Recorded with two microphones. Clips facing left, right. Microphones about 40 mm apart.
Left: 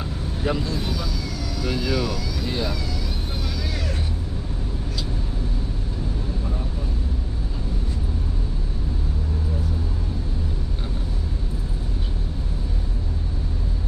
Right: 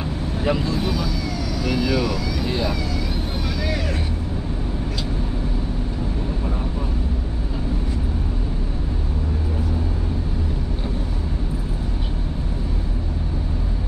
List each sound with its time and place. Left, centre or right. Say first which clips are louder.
0.4 s speech: right 3 dB; right